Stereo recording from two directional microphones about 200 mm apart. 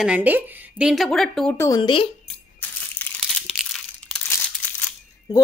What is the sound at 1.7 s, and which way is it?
Speech, 25° left (ahead or behind).